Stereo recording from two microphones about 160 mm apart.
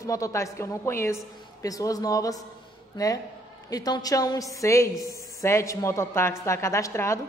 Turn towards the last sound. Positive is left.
turn(degrees=15)  # may be behind; listen again after turning